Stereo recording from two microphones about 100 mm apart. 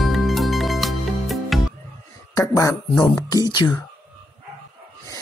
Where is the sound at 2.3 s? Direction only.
35° left (ahead or behind).